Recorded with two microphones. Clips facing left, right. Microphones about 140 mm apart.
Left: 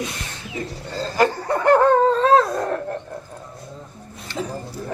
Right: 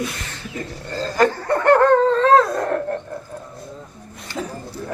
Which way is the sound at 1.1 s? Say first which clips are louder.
Right 2 dB; 10° left (ahead or behind).